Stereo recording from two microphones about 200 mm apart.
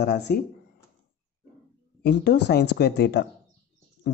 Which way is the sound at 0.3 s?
50° left (ahead or behind).